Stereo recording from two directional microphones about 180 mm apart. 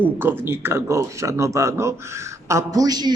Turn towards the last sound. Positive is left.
turn(degrees=-20)  # may be behind; listen again after turning